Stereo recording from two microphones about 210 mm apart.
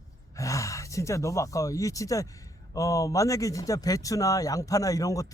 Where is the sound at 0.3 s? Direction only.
15° left (ahead or behind).